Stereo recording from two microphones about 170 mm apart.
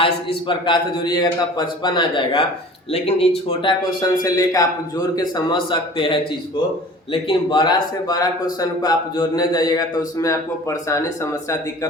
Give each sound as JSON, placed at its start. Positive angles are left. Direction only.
{"t": 0.4, "sound": "a man's voice", "side_deg": 30}
{"t": 3.6, "sound": "a man's voice", "side_deg": 25}